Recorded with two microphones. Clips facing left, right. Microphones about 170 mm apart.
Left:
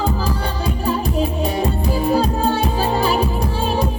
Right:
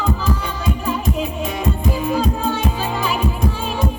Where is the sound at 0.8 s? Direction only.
35° left (ahead or behind).